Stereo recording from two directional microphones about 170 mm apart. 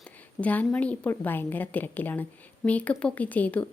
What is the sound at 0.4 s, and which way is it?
Speech, 10° left (ahead or behind).